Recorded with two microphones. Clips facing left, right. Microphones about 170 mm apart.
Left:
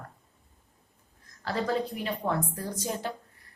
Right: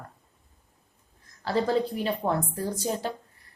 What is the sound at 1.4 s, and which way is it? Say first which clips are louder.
A woman's voice: right 4 dB; 30° right (ahead or behind).